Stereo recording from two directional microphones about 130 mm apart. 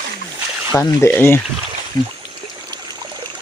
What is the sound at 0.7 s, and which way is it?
Speech, 20° left (ahead or behind).